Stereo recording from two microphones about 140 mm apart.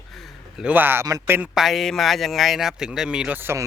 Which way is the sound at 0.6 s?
15° right (ahead or behind).